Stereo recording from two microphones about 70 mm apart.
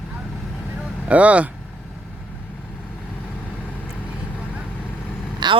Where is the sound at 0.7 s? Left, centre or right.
Right.